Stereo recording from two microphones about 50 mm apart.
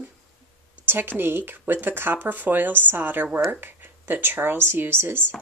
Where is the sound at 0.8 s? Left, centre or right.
Right.